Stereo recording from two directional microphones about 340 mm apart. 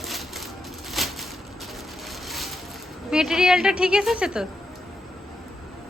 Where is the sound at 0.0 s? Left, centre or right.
Centre.